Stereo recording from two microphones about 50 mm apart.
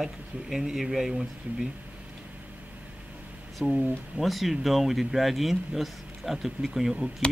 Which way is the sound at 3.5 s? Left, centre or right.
Centre.